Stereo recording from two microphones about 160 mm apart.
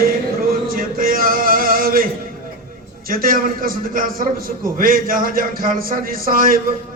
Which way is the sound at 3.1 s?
60° right (ahead or behind).